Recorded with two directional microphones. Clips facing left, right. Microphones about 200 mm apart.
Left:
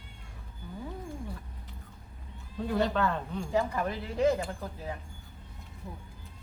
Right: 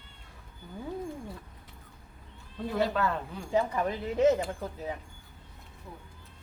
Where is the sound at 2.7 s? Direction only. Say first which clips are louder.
Even; 5° right (ahead or behind).